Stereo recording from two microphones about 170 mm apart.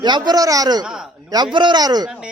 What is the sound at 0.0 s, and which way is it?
Speech, 25° right (ahead or behind).